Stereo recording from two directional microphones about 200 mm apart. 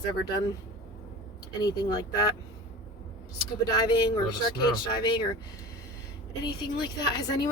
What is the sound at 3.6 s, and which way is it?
Speech, 20° left (ahead or behind).